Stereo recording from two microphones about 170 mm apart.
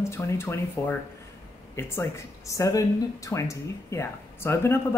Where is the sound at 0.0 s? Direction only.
15° left (ahead or behind).